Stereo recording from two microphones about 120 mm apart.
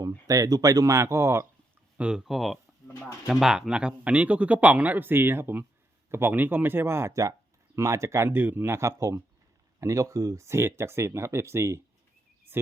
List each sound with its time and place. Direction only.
0.3 s speech: 30° right (ahead or behind)
2.0 s speech: 5° right (ahead or behind)